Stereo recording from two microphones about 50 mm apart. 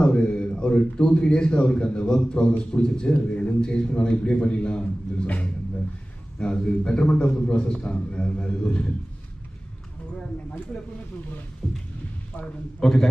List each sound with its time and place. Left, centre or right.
0.0 s a man's voice: left
10.7 s a man's voice: centre